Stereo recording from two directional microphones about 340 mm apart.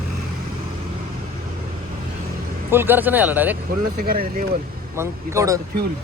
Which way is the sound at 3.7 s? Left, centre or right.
Right.